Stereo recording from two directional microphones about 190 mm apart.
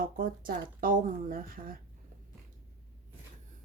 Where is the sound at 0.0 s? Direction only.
50° right (ahead or behind).